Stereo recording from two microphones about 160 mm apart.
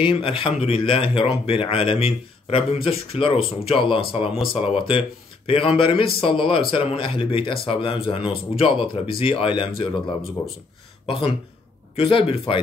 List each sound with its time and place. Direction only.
0.0 s speech: 35° left (ahead or behind)